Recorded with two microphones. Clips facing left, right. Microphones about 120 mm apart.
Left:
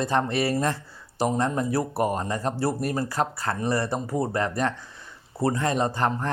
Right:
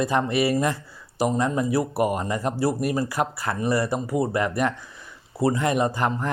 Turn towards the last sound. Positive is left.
turn(degrees=-10)  # may be behind; listen again after turning